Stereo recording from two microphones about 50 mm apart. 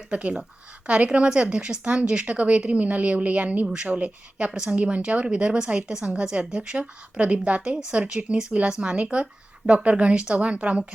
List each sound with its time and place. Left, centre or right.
0.1 s a woman's voice: right